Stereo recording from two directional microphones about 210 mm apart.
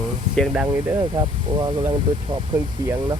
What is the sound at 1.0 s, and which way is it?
Speech, 20° right (ahead or behind).